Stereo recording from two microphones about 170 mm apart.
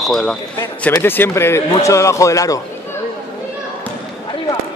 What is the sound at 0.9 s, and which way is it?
Speech, 15° left (ahead or behind).